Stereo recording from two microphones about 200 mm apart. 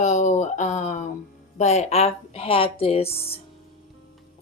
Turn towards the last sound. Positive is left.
turn(degrees=30)  # may be behind; listen again after turning